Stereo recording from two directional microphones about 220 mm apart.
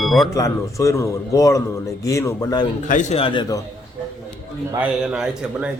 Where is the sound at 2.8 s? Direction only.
35° left (ahead or behind).